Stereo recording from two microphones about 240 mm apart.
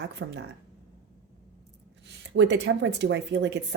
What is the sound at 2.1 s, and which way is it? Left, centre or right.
A woman's voice, right.